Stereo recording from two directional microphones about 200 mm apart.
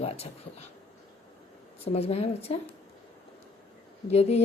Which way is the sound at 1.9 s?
30° left (ahead or behind).